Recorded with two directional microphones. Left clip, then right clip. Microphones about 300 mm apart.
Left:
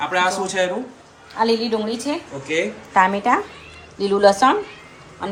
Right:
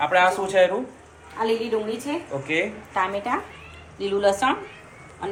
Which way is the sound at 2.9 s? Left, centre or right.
Left.